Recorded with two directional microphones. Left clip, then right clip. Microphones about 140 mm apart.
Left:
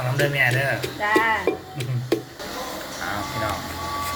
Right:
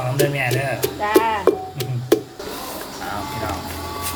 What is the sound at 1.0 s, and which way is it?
Speech, 20° right (ahead or behind).